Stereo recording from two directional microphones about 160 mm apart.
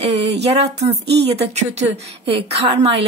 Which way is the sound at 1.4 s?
40° right (ahead or behind).